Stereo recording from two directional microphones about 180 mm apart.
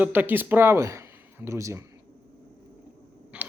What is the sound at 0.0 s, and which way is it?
Speech, 10° right (ahead or behind).